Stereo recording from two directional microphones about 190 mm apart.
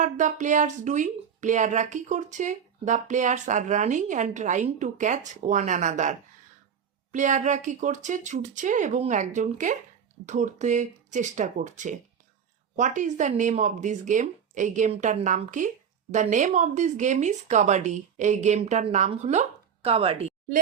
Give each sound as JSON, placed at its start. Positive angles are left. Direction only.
{"t": 0.0, "sound": "speech", "side_deg": -40}